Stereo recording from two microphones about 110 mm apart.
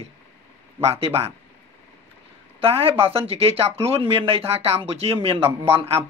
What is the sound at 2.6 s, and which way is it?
Speech, 60° right (ahead or behind).